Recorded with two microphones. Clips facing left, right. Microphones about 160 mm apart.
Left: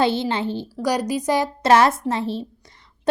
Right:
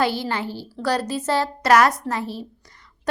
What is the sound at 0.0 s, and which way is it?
A woman's voice, 25° left (ahead or behind).